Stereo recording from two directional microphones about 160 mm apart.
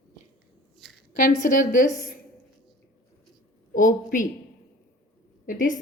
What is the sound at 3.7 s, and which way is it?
Speech, 55° left (ahead or behind).